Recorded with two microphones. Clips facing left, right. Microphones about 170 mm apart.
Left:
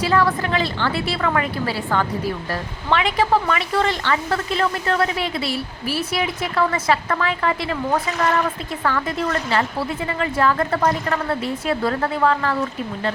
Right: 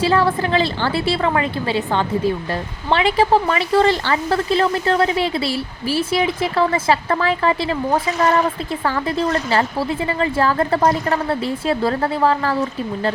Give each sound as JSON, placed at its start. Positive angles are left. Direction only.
{"t": 0.0, "sound": "a woman's voice", "side_deg": -30}